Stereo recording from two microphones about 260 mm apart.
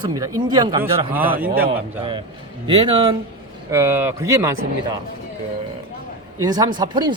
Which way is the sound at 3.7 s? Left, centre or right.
Centre.